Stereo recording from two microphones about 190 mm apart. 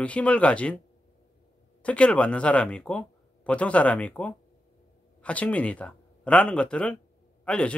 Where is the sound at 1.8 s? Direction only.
5° left (ahead or behind).